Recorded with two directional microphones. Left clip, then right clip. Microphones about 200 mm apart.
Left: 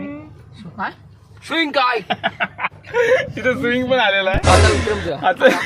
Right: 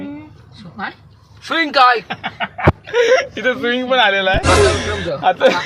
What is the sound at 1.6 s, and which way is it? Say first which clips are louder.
Speech: right 4 dB; 25° right (ahead or behind).